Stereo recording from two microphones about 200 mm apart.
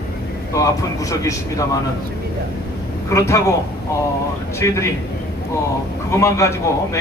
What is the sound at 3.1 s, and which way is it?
Speech, 15° left (ahead or behind).